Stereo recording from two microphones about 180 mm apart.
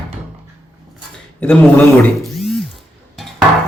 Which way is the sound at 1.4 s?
5° left (ahead or behind).